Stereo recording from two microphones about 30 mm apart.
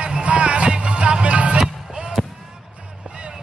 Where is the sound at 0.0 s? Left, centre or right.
Right.